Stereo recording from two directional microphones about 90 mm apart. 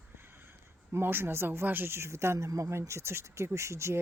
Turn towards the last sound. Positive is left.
turn(degrees=-30)  # may be behind; listen again after turning